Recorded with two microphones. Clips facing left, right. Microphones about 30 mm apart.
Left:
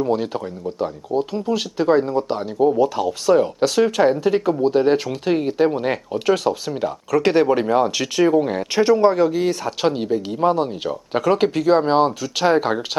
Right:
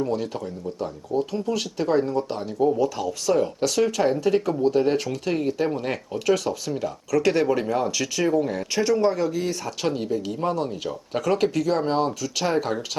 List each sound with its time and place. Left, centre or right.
0.1 s speech: left
10.4 s speech: left
10.8 s speech: left